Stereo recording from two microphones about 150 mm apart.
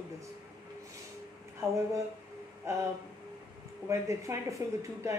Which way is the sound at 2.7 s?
20° right (ahead or behind).